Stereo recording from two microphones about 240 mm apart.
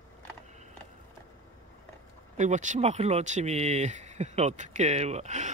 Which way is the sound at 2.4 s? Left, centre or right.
Right.